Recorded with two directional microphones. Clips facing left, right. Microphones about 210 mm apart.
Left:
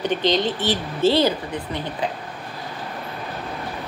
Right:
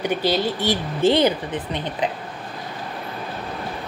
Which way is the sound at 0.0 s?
10° right (ahead or behind).